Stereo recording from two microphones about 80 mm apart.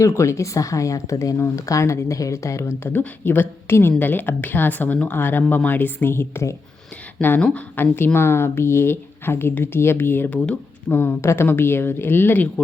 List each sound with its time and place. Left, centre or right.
0.0 s a woman's voice: left
7.2 s a woman's voice: left
10.2 s a woman's voice: centre